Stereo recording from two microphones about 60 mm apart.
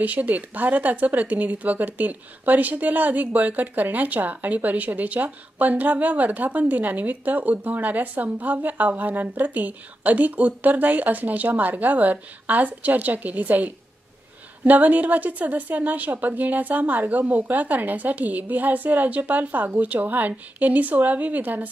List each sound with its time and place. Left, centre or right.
0.0 s a woman's voice: right